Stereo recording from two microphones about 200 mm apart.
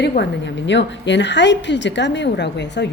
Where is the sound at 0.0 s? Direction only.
55° left (ahead or behind).